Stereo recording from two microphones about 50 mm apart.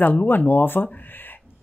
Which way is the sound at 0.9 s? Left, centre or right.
Left.